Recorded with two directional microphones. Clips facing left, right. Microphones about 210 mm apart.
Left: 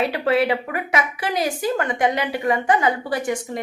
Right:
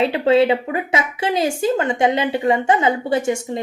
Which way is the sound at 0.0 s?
25° right (ahead or behind).